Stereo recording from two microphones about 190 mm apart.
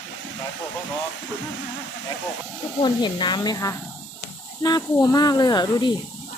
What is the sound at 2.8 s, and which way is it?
Speech, 25° left (ahead or behind).